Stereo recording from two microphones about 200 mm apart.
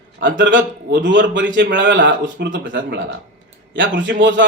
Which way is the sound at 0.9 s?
60° right (ahead or behind).